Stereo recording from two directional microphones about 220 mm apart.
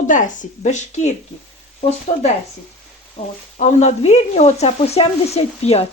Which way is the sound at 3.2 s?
20° left (ahead or behind).